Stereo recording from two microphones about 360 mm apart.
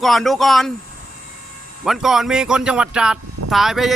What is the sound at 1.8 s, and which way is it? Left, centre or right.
Speech, centre.